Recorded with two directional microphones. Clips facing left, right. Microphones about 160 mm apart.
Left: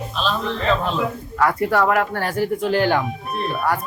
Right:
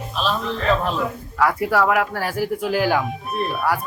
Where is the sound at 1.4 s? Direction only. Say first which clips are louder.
Even; 5° right (ahead or behind).